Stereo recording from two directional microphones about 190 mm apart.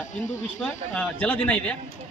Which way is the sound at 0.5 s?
10° left (ahead or behind).